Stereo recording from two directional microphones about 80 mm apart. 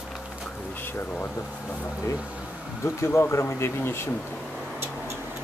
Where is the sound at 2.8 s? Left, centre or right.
Left.